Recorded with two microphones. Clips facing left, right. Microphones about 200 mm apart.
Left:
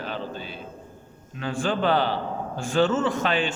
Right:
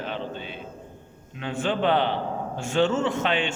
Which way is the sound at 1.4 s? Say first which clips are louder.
Even; 25° right (ahead or behind).